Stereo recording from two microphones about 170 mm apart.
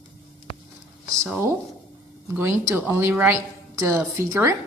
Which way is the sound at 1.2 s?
15° right (ahead or behind).